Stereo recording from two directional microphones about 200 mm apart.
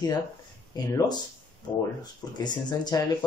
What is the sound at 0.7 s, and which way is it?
Speech, 20° left (ahead or behind).